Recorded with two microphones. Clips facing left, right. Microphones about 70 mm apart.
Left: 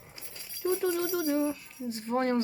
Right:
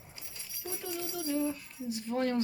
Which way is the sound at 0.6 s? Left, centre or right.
Left.